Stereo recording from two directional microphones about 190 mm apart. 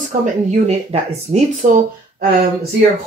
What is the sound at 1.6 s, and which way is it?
Speech, 45° right (ahead or behind).